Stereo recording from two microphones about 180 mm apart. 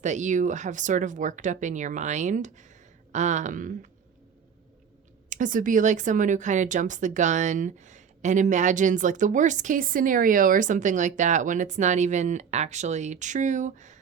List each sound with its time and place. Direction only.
0.0 s speech: 40° right (ahead or behind)
5.3 s speech: 45° right (ahead or behind)